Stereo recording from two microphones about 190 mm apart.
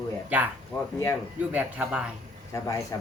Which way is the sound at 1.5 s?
5° right (ahead or behind).